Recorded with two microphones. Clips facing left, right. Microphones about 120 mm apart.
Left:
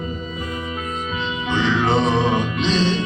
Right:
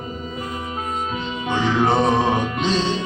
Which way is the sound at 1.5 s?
45° right (ahead or behind).